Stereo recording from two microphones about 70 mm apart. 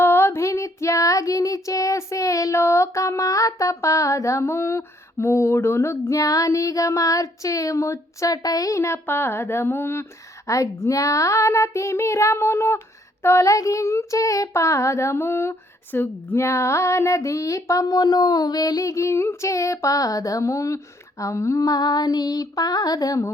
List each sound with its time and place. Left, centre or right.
0.0 s child singing: left